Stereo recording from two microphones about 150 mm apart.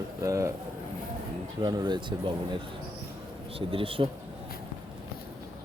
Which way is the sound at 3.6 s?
35° right (ahead or behind).